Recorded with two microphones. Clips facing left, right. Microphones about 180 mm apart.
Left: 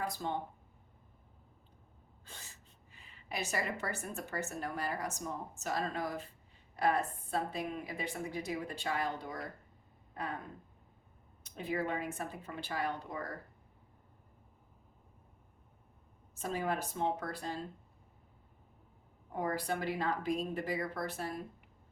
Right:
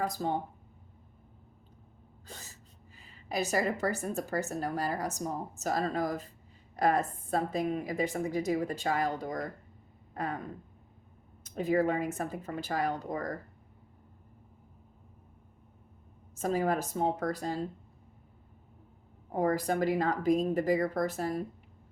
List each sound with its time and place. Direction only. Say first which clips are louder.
0.0 s a woman's voice: right 5 dB; 40° right (ahead or behind)
2.2 s gasp: right 6 dB; 40° right (ahead or behind)
2.9 s a woman's voice: right 8 dB; 40° right (ahead or behind)
11.4 s a woman's voice: right 9 dB; 45° right (ahead or behind)
16.4 s a woman's voice: right 7 dB; 40° right (ahead or behind)
19.3 s a woman's voice: right 7 dB; 40° right (ahead or behind)